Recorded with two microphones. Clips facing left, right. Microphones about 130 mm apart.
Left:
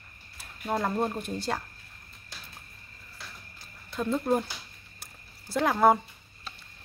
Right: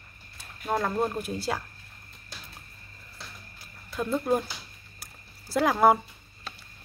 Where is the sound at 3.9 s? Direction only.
5° right (ahead or behind).